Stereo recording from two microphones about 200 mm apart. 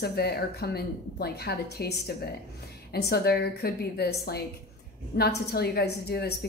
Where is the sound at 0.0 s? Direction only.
50° left (ahead or behind).